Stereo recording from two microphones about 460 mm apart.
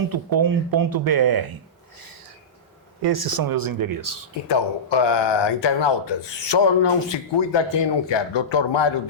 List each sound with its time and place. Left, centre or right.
0.1 s speech: right
3.0 s speech: right
4.4 s speech: left